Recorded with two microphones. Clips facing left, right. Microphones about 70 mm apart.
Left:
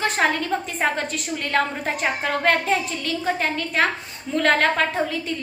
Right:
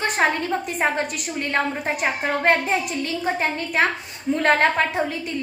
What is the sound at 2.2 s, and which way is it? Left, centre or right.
A woman's voice, right.